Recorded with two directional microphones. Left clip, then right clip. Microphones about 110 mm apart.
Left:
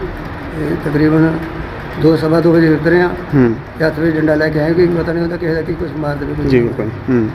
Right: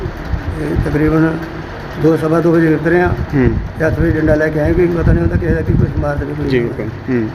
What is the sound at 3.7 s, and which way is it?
Speech, 10° right (ahead or behind).